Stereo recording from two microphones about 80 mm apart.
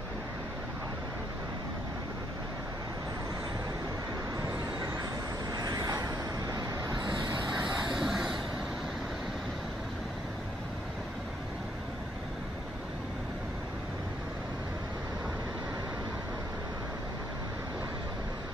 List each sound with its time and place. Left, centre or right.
5.5 s vehicle: right
8.0 s vehicle: centre